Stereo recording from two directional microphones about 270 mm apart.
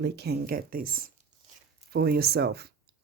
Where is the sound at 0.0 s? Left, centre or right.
Right.